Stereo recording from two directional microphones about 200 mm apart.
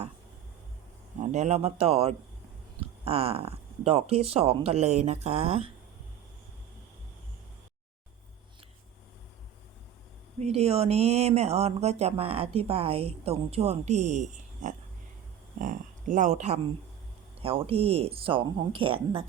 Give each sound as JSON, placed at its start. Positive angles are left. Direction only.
{"t": 1.2, "sound": "speech", "side_deg": -35}
{"t": 10.4, "sound": "speech", "side_deg": -30}